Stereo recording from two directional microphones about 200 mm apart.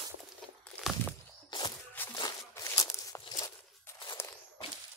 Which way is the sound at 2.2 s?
15° left (ahead or behind).